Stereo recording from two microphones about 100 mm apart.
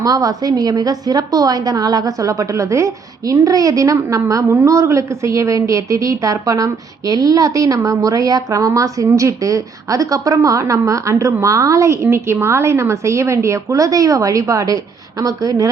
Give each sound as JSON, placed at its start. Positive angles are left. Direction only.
{"t": 0.0, "sound": "a woman's voice", "side_deg": -35}